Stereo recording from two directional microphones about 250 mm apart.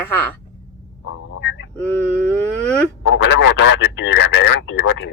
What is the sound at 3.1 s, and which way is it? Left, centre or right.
Speech, left.